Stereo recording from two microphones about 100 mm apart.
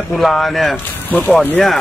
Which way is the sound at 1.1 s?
15° left (ahead or behind).